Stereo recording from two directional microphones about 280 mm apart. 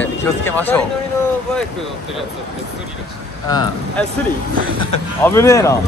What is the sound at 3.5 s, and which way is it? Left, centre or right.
Speech, centre.